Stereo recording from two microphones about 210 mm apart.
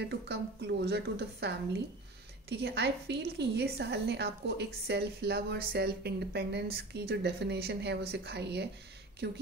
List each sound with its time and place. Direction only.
0.0 s a woman's voice: 50° right (ahead or behind)